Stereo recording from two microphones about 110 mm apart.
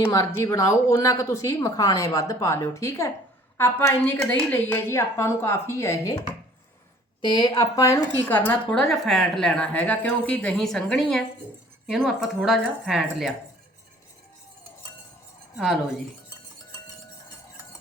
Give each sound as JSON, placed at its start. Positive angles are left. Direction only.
{"t": 0.4, "sound": "speech", "side_deg": 30}
{"t": 7.2, "sound": "speech", "side_deg": 40}
{"t": 8.3, "sound": "a woman's voice", "side_deg": 10}
{"t": 15.5, "sound": "speech", "side_deg": -5}